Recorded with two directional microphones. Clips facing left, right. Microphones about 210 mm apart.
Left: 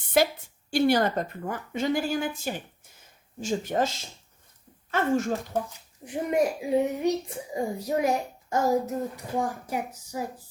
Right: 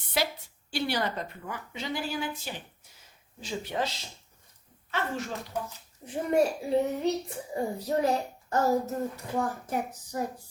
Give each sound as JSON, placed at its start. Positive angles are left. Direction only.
{"t": 0.2, "sound": "a woman's voice", "side_deg": 50}
{"t": 6.1, "sound": "a child's voice", "side_deg": 15}